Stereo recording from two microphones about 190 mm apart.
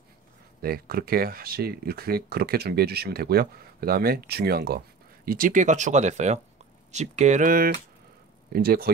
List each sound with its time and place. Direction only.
0.6 s speech: 50° right (ahead or behind)